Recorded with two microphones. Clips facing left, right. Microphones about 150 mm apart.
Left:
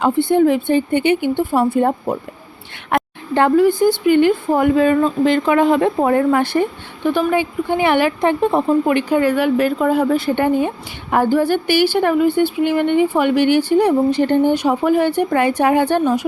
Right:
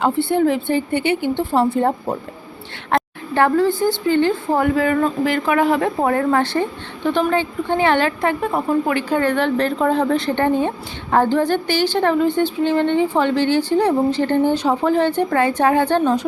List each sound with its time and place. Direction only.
0.0 s a woman's voice: 15° left (ahead or behind)
2.9 s a woman's voice: 20° left (ahead or behind)